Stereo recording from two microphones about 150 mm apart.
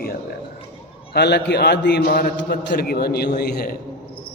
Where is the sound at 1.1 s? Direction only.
90° left.